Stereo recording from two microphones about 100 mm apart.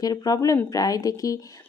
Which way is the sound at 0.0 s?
40° left (ahead or behind).